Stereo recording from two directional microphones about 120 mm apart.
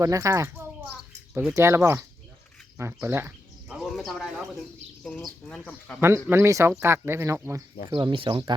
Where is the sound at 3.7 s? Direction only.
Centre (ahead or behind).